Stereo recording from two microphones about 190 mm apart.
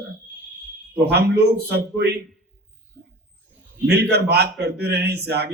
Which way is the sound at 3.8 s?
60° right (ahead or behind).